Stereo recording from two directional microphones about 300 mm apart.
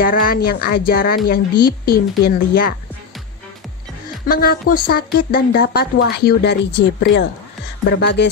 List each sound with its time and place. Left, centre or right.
0.0 s speech: left
4.3 s speech: left